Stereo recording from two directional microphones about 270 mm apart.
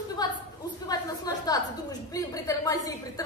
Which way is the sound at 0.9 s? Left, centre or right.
Centre.